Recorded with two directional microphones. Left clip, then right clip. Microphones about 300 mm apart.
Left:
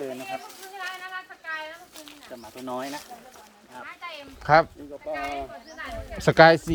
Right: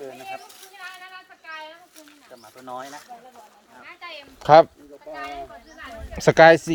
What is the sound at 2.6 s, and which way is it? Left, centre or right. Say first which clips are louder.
Speech: left 2 dB; left.